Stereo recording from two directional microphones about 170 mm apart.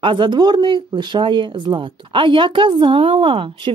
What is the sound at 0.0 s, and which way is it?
Speech, 30° right (ahead or behind).